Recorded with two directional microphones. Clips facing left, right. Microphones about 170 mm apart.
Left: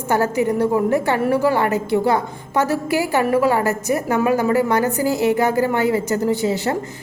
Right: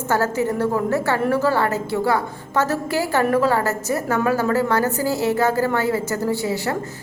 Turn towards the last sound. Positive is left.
turn(degrees=20)  # may be behind; listen again after turning